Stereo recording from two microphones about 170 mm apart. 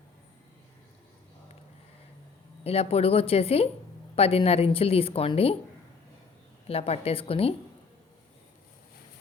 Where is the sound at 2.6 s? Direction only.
35° left (ahead or behind).